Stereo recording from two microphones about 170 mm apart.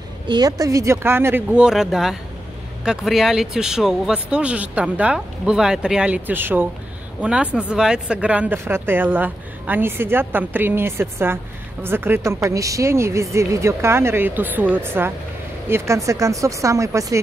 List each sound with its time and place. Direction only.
0.3 s speech: 20° right (ahead or behind)